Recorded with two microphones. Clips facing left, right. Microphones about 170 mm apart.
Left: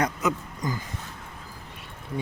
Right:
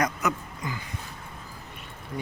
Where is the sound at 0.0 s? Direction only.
25° left (ahead or behind).